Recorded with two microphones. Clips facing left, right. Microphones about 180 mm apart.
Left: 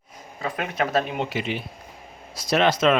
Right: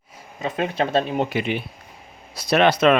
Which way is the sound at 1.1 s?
50° right (ahead or behind).